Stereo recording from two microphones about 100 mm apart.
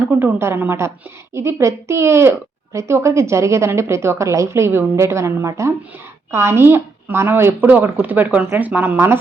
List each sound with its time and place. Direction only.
0.1 s a woman's voice: 25° right (ahead or behind)